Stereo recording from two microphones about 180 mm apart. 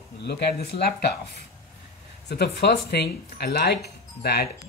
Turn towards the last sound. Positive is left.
turn(degrees=60)  # may be behind; listen again after turning